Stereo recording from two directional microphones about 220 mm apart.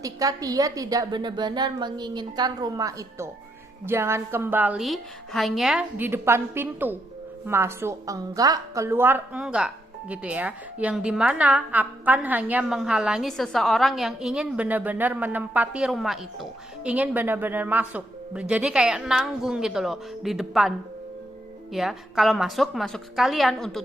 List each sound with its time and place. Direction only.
0.0 s a woman's voice: 15° right (ahead or behind); by 23.8 s centre (ahead or behind)